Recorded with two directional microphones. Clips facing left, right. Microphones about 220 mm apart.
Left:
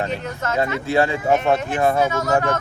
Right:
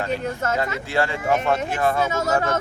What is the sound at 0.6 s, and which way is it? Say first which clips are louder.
Speech: left 9 dB; 20° left (ahead or behind).